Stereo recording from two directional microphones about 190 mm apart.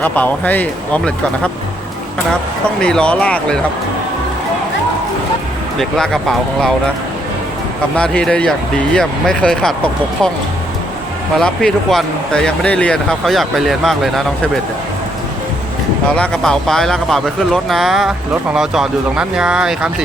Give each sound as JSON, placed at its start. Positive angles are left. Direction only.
{"t": 0.0, "sound": "speech", "side_deg": 10}
{"t": 2.8, "sound": "speech", "side_deg": 5}
{"t": 5.8, "sound": "speech", "side_deg": 5}
{"t": 7.9, "sound": "speech", "side_deg": 5}
{"t": 11.3, "sound": "speech", "side_deg": 0}
{"t": 16.0, "sound": "speech", "side_deg": 5}